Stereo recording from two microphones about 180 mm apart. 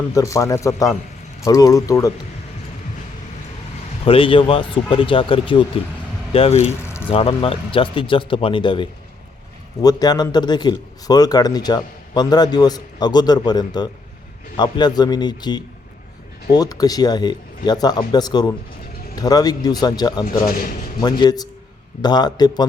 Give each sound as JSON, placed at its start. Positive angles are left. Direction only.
{"t": 0.1, "sound": "speech", "side_deg": 15}
{"t": 4.0, "sound": "speech", "side_deg": 30}
{"t": 20.2, "sound": "speech", "side_deg": 50}
{"t": 21.0, "sound": "speech", "side_deg": 20}